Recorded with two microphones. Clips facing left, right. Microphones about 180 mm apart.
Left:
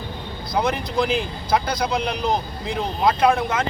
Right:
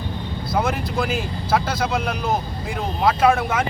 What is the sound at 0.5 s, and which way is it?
Speech, 5° right (ahead or behind).